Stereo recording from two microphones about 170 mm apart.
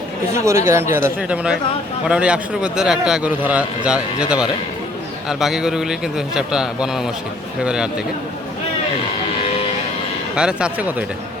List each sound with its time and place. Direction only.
0.3 s a man's voice: 15° right (ahead or behind)
10.3 s a man's voice: 5° right (ahead or behind)